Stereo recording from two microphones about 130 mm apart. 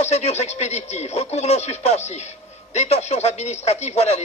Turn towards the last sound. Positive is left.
turn(degrees=55)  # may be behind; listen again after turning